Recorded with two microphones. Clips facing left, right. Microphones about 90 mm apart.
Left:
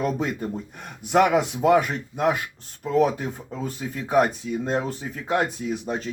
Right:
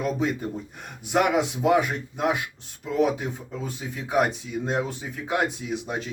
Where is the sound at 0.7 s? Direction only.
55° left (ahead or behind).